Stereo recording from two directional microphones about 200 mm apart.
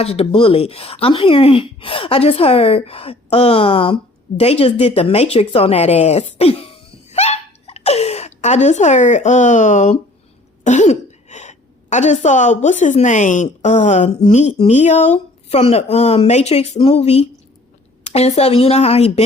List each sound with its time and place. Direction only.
0.0 s speech: 30° left (ahead or behind)